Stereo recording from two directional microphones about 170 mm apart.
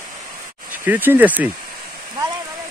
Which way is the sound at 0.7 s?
10° right (ahead or behind).